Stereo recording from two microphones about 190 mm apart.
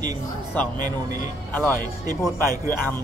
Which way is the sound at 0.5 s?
10° left (ahead or behind).